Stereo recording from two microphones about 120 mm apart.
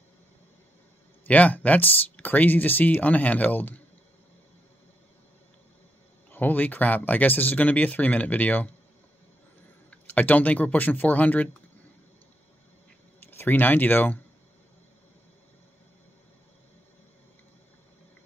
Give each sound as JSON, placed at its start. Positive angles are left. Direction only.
{"t": 1.2, "sound": "speech", "side_deg": 15}
{"t": 6.3, "sound": "speech", "side_deg": 15}
{"t": 9.8, "sound": "speech", "side_deg": 10}
{"t": 13.3, "sound": "speech", "side_deg": 15}